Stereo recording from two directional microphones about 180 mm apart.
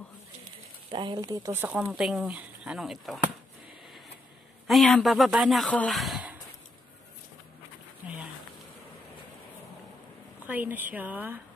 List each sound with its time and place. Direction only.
0.8 s speech: 25° right (ahead or behind); by 3.2 s centre (ahead or behind)
4.6 s speech: centre (ahead or behind)
10.4 s speech: 10° right (ahead or behind)